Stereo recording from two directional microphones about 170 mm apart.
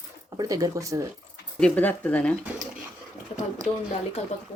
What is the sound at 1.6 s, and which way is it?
Speech, 10° left (ahead or behind).